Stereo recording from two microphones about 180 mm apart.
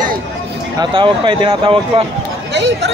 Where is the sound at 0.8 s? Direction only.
25° right (ahead or behind).